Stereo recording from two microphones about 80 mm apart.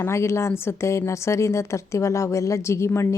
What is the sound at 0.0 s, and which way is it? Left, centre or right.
A woman's voice, left.